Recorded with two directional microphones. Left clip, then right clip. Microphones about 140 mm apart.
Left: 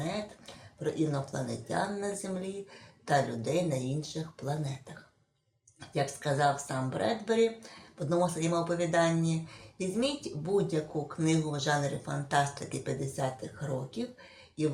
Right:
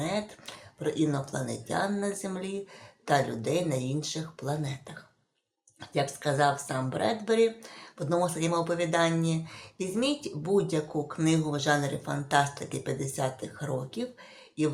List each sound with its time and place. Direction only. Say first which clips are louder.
0.0 s speech: right 4 dB; 40° right (ahead or behind)
5.8 s speech: right 3 dB; 30° right (ahead or behind)